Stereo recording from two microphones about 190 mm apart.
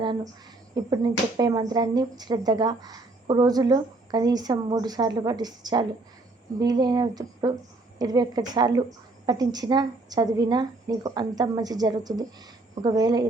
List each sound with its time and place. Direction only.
0.7 s speech: 20° right (ahead or behind)